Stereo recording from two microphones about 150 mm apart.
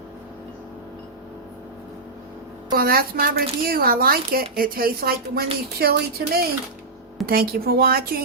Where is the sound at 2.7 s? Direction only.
80° right.